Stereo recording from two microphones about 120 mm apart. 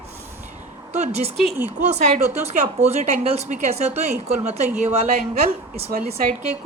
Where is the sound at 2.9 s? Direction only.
70° right (ahead or behind).